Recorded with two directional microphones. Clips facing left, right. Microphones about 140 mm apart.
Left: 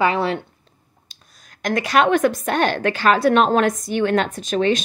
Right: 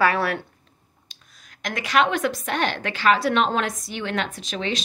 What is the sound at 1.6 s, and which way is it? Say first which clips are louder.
A woman's voice: left 4 dB; 45° left (ahead or behind).